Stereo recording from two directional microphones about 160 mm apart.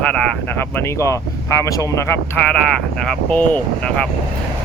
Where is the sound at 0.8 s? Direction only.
20° left (ahead or behind).